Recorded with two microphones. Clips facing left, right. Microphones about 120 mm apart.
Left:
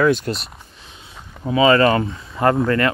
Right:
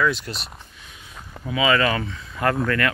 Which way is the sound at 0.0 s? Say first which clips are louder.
Left 6 dB; 50° left (ahead or behind).